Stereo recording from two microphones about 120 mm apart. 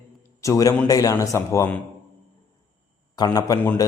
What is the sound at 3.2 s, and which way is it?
Speech, 35° left (ahead or behind).